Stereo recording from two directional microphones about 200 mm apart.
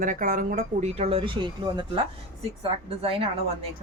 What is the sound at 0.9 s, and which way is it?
Speech, 30° right (ahead or behind).